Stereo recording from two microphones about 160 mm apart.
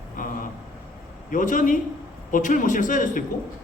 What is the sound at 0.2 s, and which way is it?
Vehicle, 55° left (ahead or behind).